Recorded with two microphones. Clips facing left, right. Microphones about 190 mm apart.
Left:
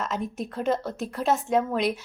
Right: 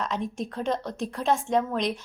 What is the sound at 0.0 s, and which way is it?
A woman's voice, 5° left (ahead or behind).